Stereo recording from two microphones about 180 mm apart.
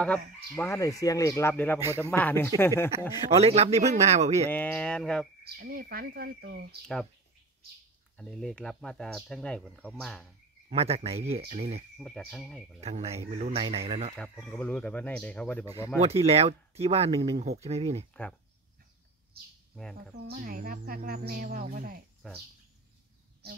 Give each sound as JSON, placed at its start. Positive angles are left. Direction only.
{"t": 0.0, "sound": "speech", "side_deg": 10}
{"t": 3.3, "sound": "speech", "side_deg": -35}
{"t": 4.5, "sound": "speech", "side_deg": 10}
{"t": 5.4, "sound": "speech", "side_deg": -55}
{"t": 8.2, "sound": "speech", "side_deg": 5}
{"t": 10.7, "sound": "speech", "side_deg": -35}
{"t": 12.0, "sound": "speech", "side_deg": 0}
{"t": 12.8, "sound": "speech", "side_deg": -35}
{"t": 14.1, "sound": "speech", "side_deg": 5}
{"t": 16.0, "sound": "speech", "side_deg": -35}
{"t": 19.7, "sound": "speech", "side_deg": 0}
{"t": 20.2, "sound": "speech", "side_deg": -50}